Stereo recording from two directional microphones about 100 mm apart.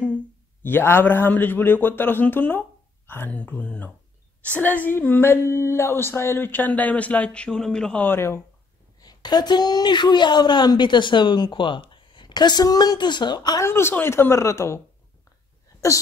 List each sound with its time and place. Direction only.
0.0 s a man's voice: 15° left (ahead or behind)
9.0 s a woman's voice: 45° left (ahead or behind)
13.6 s speech: 25° left (ahead or behind)